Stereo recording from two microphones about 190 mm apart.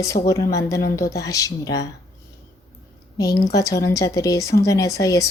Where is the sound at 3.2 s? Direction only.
20° left (ahead or behind).